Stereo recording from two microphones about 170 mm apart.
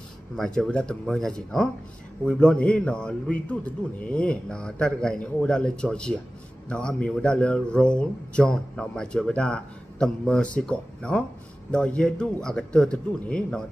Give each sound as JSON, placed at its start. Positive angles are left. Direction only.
{"t": 0.4, "sound": "a man's voice", "side_deg": 5}